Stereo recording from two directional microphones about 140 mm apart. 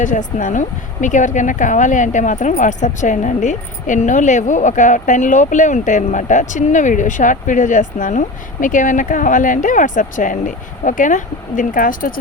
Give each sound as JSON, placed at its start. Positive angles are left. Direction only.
{"t": 0.0, "sound": "speech", "side_deg": 65}